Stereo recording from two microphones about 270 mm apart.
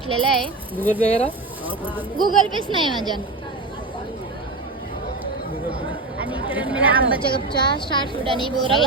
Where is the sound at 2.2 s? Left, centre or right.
Centre.